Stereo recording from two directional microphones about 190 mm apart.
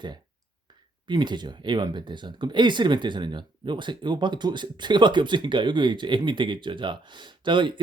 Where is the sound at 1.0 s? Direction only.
25° right (ahead or behind).